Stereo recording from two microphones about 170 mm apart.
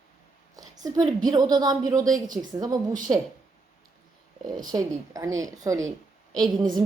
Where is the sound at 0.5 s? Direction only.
20° right (ahead or behind).